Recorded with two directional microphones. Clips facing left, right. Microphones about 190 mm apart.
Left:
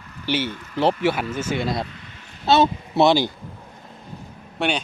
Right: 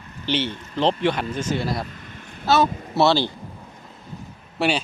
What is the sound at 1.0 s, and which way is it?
Speech, 10° left (ahead or behind).